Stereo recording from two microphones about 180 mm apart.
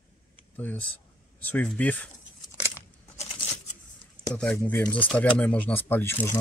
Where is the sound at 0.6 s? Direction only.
10° left (ahead or behind).